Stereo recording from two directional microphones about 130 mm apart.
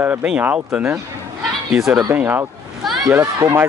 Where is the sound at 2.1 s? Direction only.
15° right (ahead or behind).